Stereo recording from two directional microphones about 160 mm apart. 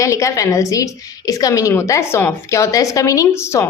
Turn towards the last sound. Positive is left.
turn(degrees=15)  # may be behind; listen again after turning